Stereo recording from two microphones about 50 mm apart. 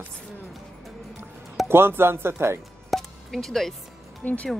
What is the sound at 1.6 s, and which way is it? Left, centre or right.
Speech, right.